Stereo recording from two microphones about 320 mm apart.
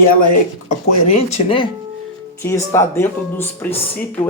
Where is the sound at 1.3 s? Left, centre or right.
Centre.